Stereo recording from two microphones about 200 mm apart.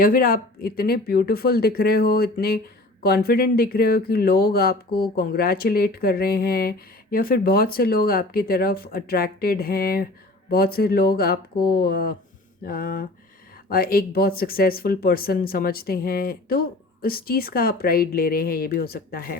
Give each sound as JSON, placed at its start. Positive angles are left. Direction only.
{"t": 0.0, "sound": "speech", "side_deg": 45}